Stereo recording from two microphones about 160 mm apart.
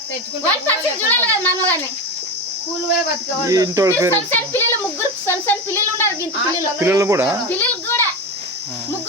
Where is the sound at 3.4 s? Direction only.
20° right (ahead or behind).